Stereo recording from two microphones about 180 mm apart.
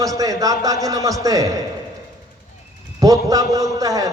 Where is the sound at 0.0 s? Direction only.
20° right (ahead or behind).